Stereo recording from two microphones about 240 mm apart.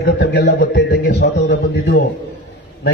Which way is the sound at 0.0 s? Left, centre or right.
Left.